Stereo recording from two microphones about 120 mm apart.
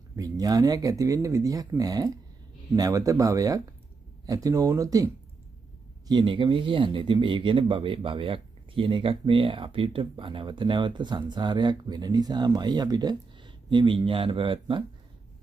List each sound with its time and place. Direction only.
0.1 s speech: 30° right (ahead or behind)
6.0 s speech: 40° right (ahead or behind)